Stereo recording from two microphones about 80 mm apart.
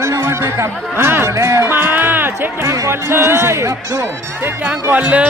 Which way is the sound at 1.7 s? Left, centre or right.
Right.